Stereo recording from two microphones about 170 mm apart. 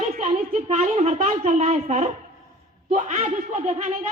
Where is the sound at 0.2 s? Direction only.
45° right (ahead or behind).